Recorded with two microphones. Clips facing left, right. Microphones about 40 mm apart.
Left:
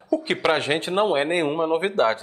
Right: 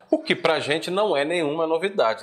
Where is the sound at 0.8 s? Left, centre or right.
Left.